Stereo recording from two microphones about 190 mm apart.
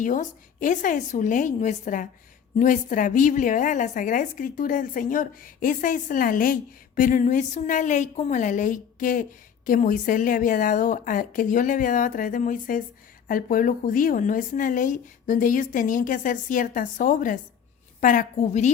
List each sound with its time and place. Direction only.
0.0 s a woman's voice: 45° left (ahead or behind)